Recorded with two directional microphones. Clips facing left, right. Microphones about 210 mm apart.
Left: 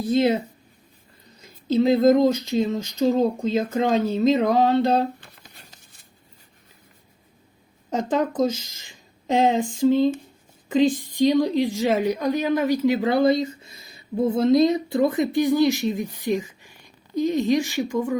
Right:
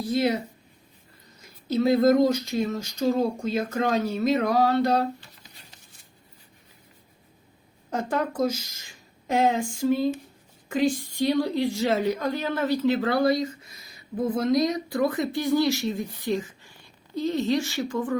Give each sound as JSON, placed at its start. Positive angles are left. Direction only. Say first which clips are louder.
{"t": 0.0, "sound": "speech", "louder": "left 4 dB", "side_deg": 20}
{"t": 1.7, "sound": "speech", "louder": "left 3 dB", "side_deg": 15}
{"t": 5.2, "sound": "a sound", "louder": "left 3 dB", "side_deg": 55}
{"t": 7.9, "sound": "a woman's voice", "louder": "left 4 dB", "side_deg": 15}